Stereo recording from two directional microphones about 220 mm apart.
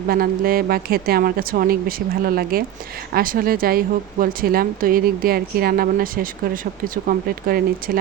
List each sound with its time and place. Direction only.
0.1 s a woman's voice: 40° right (ahead or behind)